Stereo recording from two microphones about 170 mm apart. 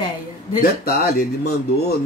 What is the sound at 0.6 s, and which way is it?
Speech, 60° left (ahead or behind).